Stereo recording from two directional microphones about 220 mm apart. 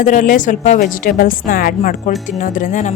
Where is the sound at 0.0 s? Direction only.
35° left (ahead or behind).